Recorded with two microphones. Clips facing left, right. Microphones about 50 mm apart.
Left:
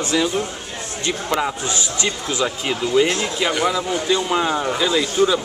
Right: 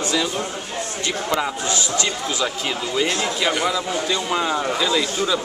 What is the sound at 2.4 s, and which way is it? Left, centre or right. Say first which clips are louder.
A man's voice: left 5 dB; centre.